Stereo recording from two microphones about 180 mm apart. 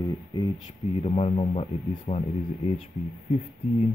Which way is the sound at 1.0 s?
35° left (ahead or behind).